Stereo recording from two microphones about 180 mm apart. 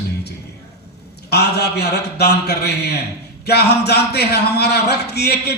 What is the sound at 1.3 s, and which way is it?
A man's voice, 65° left (ahead or behind).